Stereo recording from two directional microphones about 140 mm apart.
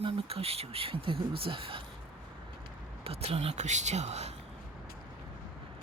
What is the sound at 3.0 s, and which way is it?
Speech, 45° right (ahead or behind).